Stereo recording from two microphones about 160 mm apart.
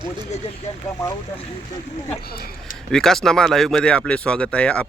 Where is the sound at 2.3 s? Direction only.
70° left (ahead or behind).